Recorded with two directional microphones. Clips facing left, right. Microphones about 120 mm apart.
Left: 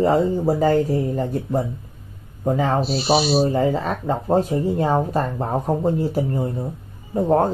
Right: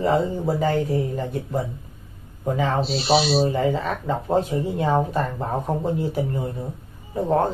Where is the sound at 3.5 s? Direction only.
40° left (ahead or behind).